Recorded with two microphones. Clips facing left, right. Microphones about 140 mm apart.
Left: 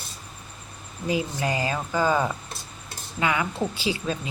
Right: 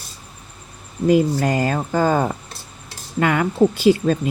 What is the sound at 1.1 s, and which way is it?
Speech, 50° right (ahead or behind).